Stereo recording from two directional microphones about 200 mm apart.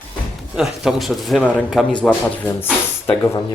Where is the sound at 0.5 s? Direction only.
Centre (ahead or behind).